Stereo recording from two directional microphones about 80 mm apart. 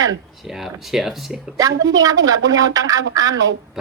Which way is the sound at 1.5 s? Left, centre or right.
Right.